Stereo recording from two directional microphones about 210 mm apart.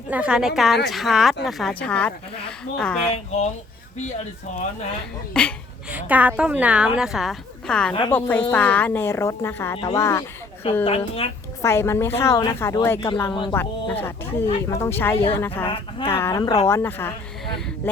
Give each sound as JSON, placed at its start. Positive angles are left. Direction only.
{"t": 0.1, "sound": "a woman's voice", "side_deg": -5}
{"t": 5.3, "sound": "a woman's voice", "side_deg": 5}
{"t": 5.9, "sound": "a woman's voice", "side_deg": -5}
{"t": 10.8, "sound": "a woman's voice", "side_deg": 25}
{"t": 11.6, "sound": "a woman's voice", "side_deg": 10}
{"t": 13.6, "sound": "speech", "side_deg": 10}
{"t": 15.6, "sound": "a woman's voice", "side_deg": 25}
{"t": 16.0, "sound": "speech", "side_deg": 10}